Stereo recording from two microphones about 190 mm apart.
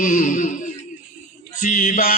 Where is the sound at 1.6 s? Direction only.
40° left (ahead or behind).